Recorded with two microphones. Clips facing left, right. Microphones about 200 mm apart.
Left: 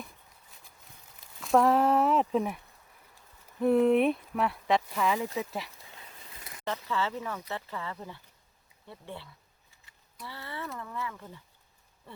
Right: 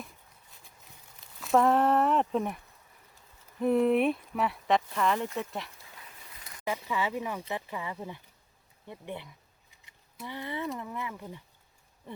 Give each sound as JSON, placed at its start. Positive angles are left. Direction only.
{"t": 1.4, "sound": "speech", "side_deg": 0}
{"t": 3.6, "sound": "speech", "side_deg": 0}
{"t": 6.7, "sound": "speech", "side_deg": -15}
{"t": 9.8, "sound": "a sound", "side_deg": -20}
{"t": 10.8, "sound": "speech", "side_deg": -20}
{"t": 12.1, "sound": "a sound", "side_deg": -20}